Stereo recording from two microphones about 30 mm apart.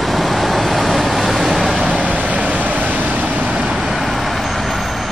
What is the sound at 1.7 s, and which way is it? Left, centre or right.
Vehicle, right.